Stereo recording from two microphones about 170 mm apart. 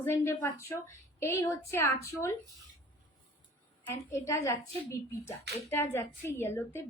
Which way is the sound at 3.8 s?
15° left (ahead or behind).